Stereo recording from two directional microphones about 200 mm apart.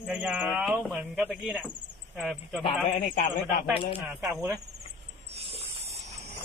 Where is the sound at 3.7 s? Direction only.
25° left (ahead or behind).